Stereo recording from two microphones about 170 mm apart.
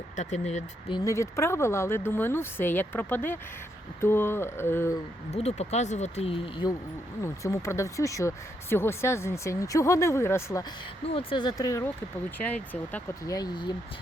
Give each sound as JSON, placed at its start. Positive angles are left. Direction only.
{"t": 0.2, "sound": "speech", "side_deg": 45}
{"t": 0.9, "sound": "speech", "side_deg": 20}
{"t": 5.3, "sound": "speech", "side_deg": 40}
{"t": 7.2, "sound": "speech", "side_deg": 15}
{"t": 11.0, "sound": "speech", "side_deg": 35}
{"t": 13.3, "sound": "speech", "side_deg": 25}